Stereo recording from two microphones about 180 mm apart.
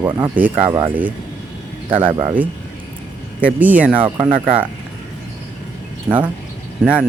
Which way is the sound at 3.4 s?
10° right (ahead or behind).